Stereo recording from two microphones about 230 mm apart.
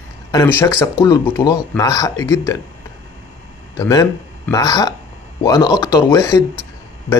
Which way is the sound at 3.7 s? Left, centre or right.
Centre.